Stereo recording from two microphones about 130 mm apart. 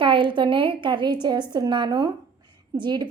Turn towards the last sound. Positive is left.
turn(degrees=-35)  # may be behind; listen again after turning